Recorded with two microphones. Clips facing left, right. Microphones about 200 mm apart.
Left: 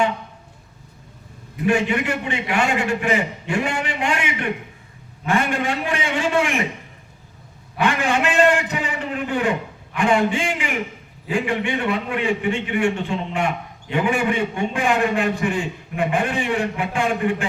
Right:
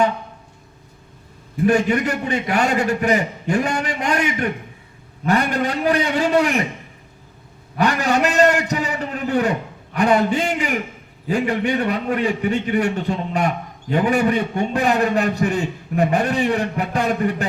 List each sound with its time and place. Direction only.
1.6 s a man's voice: 40° right (ahead or behind)
7.8 s a sound: 40° right (ahead or behind)
11.3 s a man's voice: 40° right (ahead or behind)